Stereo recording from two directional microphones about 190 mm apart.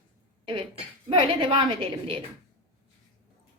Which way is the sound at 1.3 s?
30° right (ahead or behind).